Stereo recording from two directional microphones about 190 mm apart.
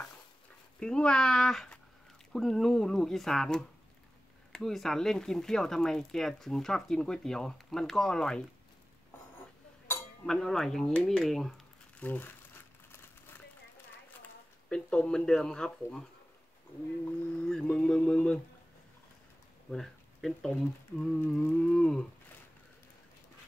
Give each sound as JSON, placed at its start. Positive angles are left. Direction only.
{"t": 0.7, "sound": "speech", "side_deg": 5}
{"t": 10.2, "sound": "a sound", "side_deg": 0}
{"t": 14.7, "sound": "speech", "side_deg": 5}
{"t": 17.4, "sound": "speech", "side_deg": 5}
{"t": 19.7, "sound": "speech", "side_deg": 0}